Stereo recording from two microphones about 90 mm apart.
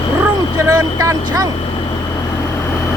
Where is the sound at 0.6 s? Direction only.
40° right (ahead or behind).